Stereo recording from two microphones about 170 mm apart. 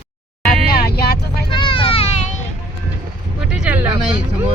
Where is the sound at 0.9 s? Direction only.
70° left (ahead or behind).